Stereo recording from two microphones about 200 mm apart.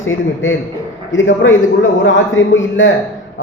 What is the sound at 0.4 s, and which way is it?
A man's voice, 70° left (ahead or behind).